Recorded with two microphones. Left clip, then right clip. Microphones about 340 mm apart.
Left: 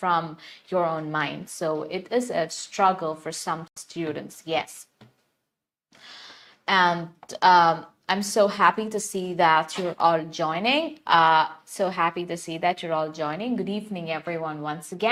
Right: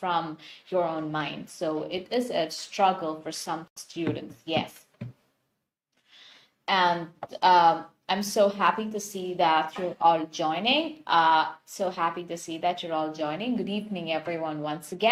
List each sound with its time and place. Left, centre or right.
0.0 s speech: left
6.7 s a woman's voice: left